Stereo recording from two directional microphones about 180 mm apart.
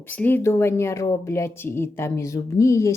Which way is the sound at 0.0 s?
10° left (ahead or behind).